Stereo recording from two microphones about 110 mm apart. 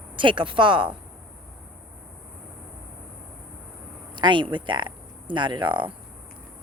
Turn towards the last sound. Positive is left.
turn(degrees=-45)  # may be behind; listen again after turning